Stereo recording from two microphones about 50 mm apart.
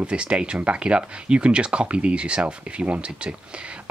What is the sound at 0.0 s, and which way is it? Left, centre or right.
Speech, right.